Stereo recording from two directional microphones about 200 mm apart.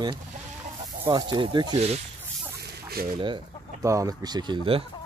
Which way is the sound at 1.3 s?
20° right (ahead or behind).